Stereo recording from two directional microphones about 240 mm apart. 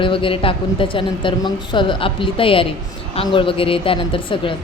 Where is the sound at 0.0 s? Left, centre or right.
Left.